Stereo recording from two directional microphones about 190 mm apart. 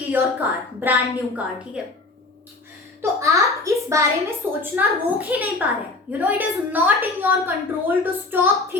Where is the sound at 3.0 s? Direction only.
15° right (ahead or behind).